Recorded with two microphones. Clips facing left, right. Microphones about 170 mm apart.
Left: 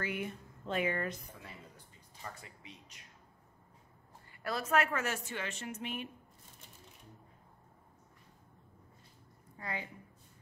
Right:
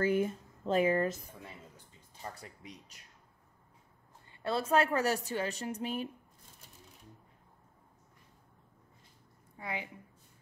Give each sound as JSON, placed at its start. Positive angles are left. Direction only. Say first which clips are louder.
{"t": 0.0, "sound": "speech", "louder": "right 9 dB", "side_deg": -35}
{"t": 2.4, "sound": "a woman's voice", "louder": "right 4 dB", "side_deg": -40}
{"t": 4.3, "sound": "a woman's voice", "louder": "right 3 dB", "side_deg": -25}
{"t": 9.6, "sound": "a woman's voice", "louder": "right 2 dB", "side_deg": -15}